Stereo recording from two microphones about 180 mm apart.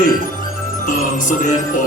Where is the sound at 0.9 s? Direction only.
45° left (ahead or behind).